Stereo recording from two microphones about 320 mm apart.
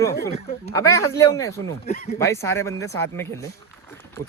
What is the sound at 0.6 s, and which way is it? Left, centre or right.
Speech, centre.